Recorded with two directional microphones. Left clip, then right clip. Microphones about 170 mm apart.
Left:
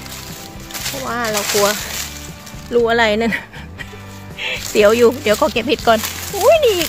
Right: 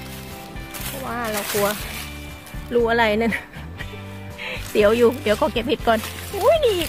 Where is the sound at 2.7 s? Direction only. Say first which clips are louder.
Left 4 dB; 20° left (ahead or behind).